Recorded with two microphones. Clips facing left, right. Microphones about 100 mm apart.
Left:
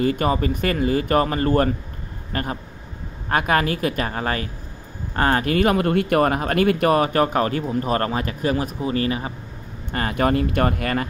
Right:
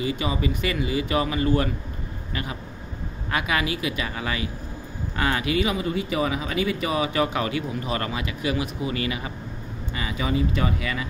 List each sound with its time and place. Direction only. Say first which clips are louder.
0.0 s speech: left 6 dB; 50° left (ahead or behind)
9.9 s speech: left 6 dB; 55° left (ahead or behind)